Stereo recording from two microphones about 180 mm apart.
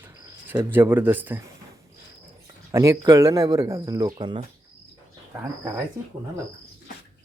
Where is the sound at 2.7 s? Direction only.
20° right (ahead or behind).